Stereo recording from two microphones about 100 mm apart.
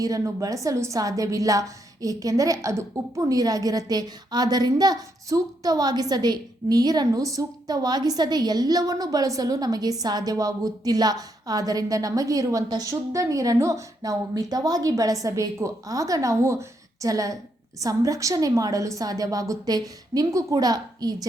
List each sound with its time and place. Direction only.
0.0 s a woman's voice: 35° right (ahead or behind)